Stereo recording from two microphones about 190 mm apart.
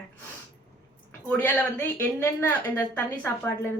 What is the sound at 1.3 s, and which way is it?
A woman's voice, 5° left (ahead or behind).